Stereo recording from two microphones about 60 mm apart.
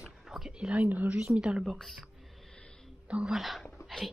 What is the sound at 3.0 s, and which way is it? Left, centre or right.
Speech, centre.